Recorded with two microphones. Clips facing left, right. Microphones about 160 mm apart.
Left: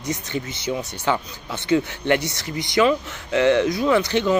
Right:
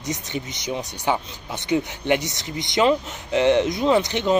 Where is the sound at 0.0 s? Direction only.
20° right (ahead or behind).